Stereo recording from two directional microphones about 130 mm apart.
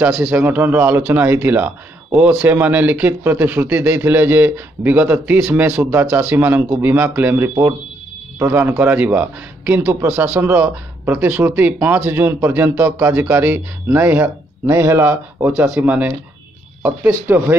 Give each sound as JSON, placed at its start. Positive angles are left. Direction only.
{"t": 0.0, "sound": "speech", "side_deg": -10}